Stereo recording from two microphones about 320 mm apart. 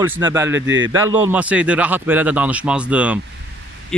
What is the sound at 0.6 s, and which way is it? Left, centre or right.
Speech, right.